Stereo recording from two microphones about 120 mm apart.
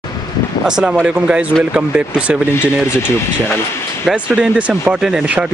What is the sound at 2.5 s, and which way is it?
Speech, 20° left (ahead or behind).